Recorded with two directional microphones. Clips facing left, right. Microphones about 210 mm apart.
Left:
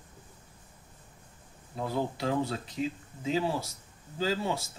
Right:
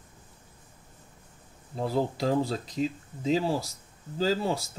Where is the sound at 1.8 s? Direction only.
35° right (ahead or behind).